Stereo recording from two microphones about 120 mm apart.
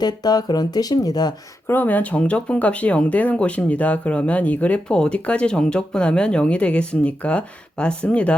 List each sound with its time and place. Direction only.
0.0 s speech: 35° left (ahead or behind)
1.6 s speech: 15° left (ahead or behind)